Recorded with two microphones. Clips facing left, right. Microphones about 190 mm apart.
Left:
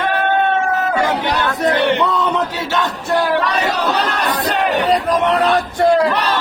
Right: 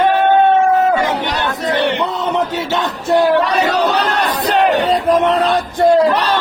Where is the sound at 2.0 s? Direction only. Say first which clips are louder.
Left 2 dB; 20° right (ahead or behind).